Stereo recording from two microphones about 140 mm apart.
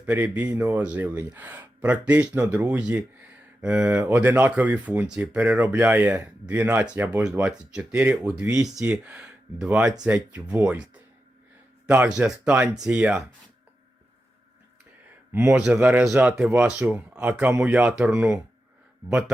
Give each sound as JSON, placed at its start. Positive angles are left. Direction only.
{"t": 0.0, "sound": "speech", "side_deg": -10}
{"t": 15.3, "sound": "speech", "side_deg": -15}